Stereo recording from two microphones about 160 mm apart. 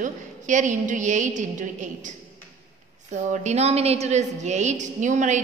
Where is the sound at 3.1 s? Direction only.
50° right (ahead or behind).